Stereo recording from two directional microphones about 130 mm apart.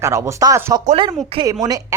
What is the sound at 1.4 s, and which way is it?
Speech, 25° right (ahead or behind).